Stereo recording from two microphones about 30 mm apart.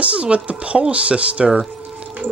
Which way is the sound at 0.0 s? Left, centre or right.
Right.